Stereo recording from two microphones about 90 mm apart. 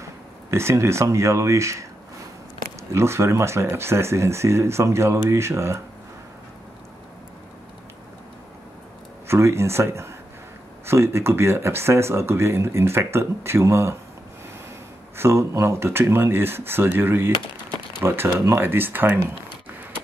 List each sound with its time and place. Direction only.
0.5 s speech: 30° right (ahead or behind)
2.9 s speech: 30° right (ahead or behind)
9.3 s speech: 30° right (ahead or behind)
15.1 s speech: 30° right (ahead or behind)